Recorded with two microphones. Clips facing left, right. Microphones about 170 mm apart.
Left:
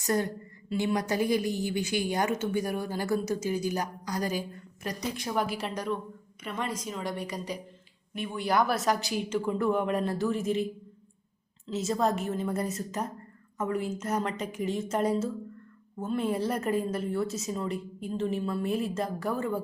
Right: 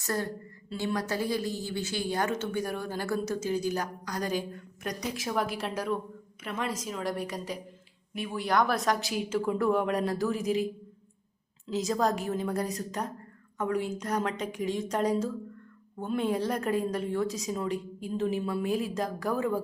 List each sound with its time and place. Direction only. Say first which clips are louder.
0.0 s a woman's voice: left 4 dB; 20° left (ahead or behind); by 10.7 s centre (ahead or behind)
11.9 s a woman's voice: left 1 dB; centre (ahead or behind)